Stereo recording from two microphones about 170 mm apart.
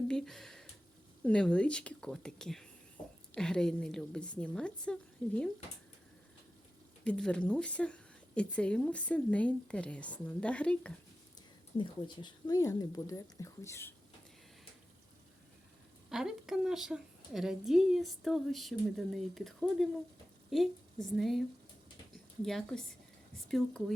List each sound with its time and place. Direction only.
0.1 s a sound: centre (ahead or behind)
1.2 s a woman's voice: 5° left (ahead or behind)
7.0 s speech: 5° left (ahead or behind)
11.8 s speech: 25° left (ahead or behind)
16.0 s a woman's voice: 5° right (ahead or behind)
22.4 s a woman's voice: 5° left (ahead or behind)